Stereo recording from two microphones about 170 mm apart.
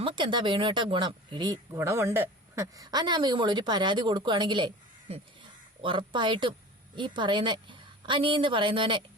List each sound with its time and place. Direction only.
0.0 s speech: 30° right (ahead or behind)